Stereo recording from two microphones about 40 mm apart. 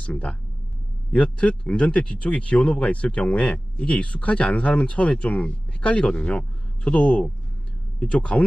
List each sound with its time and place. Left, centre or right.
0.0 s speech: left